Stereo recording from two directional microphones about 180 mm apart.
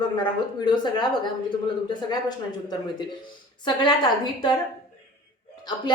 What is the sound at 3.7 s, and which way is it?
Speech, 25° left (ahead or behind).